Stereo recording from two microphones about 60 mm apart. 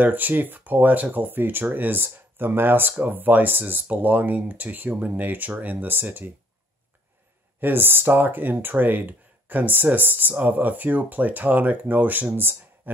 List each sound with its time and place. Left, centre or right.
0.0 s speech: right
7.6 s speech: right